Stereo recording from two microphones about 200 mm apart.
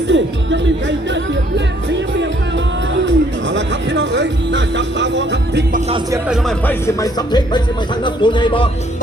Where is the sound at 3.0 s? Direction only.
65° right (ahead or behind).